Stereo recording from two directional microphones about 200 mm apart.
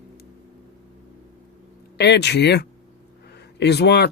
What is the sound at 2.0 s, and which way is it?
Speech, 60° left (ahead or behind).